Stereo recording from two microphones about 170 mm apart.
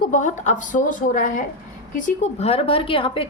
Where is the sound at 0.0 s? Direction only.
50° left (ahead or behind).